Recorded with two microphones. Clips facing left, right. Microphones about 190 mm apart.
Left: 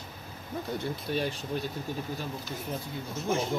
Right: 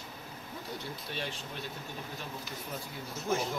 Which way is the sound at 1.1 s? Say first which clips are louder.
Left 9 dB; 40° left (ahead or behind).